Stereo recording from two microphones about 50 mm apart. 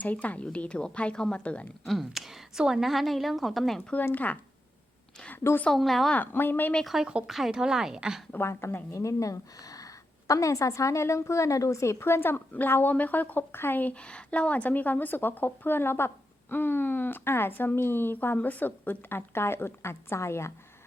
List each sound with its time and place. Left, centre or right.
0.0 s speech: left
1.9 s a woman's voice: centre
2.9 s a woman's voice: centre
4.1 s speech: left
5.7 s a woman's voice: centre
6.1 s a woman's voice: left
6.8 s a woman's voice: centre
8.4 s speech: left
8.9 s a woman's voice: left
14.1 s a woman's voice: left